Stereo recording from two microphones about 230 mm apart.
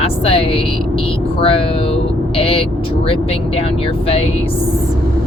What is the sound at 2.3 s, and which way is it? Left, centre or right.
Speech, left.